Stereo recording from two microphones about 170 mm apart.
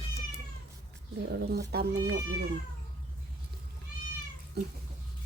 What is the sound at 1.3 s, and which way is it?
Speech, 75° right (ahead or behind).